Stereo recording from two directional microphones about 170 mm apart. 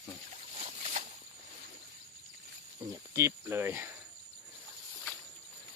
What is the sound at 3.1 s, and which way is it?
Speech, 15° right (ahead or behind).